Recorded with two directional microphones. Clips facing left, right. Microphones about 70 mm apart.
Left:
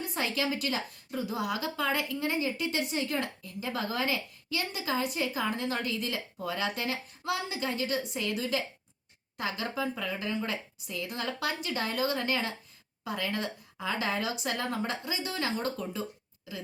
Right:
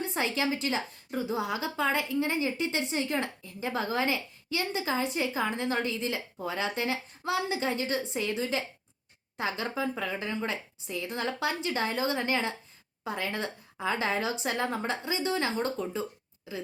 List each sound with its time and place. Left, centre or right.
0.0 s a woman's voice: right